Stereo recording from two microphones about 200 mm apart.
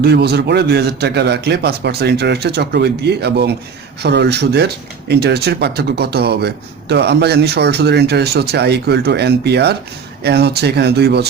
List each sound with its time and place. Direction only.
0.0 s speech: 55° right (ahead or behind)